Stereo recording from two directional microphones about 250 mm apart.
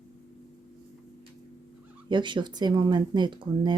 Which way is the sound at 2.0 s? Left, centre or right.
Centre.